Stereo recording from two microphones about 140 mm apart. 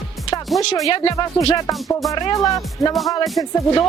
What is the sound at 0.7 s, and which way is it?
Speech, 25° left (ahead or behind).